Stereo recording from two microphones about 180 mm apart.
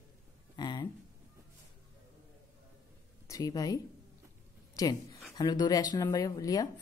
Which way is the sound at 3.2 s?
20° left (ahead or behind).